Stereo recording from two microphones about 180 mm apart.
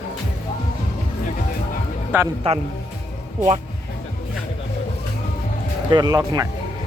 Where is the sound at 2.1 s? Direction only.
10° right (ahead or behind).